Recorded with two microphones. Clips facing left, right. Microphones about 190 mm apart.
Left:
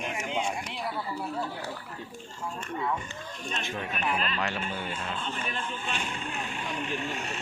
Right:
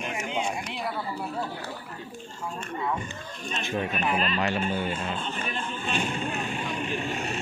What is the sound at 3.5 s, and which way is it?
Speech, 25° right (ahead or behind).